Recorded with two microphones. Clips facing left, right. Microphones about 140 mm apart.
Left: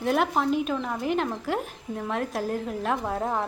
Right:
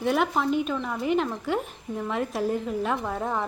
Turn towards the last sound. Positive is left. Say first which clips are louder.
# left 1 dB
turn(degrees=0)  # may be behind; listen again after turning